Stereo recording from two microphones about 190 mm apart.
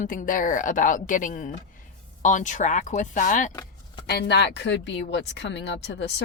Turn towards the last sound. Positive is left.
turn(degrees=65)  # may be behind; listen again after turning